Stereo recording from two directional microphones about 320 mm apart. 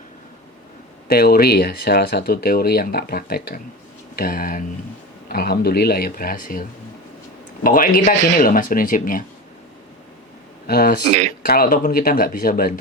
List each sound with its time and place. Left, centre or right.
1.0 s speech: left
10.7 s speech: left